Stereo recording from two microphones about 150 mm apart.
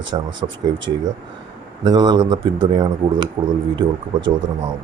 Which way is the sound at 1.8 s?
25° right (ahead or behind).